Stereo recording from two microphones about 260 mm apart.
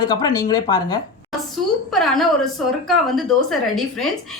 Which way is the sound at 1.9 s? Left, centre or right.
Centre.